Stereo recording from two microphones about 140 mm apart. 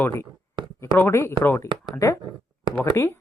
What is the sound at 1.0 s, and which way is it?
Speech, 15° left (ahead or behind).